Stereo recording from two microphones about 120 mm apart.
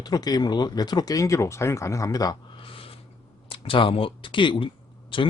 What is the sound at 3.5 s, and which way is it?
Speech, 45° left (ahead or behind).